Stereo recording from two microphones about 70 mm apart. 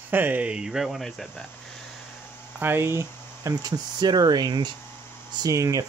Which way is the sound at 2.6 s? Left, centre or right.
Right.